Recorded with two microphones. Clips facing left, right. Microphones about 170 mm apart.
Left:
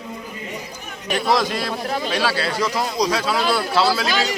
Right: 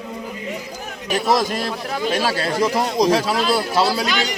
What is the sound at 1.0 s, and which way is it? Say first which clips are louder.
Speech: right 1 dB; 5° right (ahead or behind).